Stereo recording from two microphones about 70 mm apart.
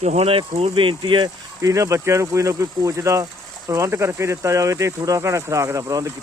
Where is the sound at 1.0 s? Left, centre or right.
Right.